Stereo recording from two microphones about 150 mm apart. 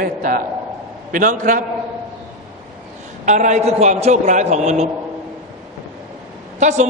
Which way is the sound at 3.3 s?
50° right (ahead or behind).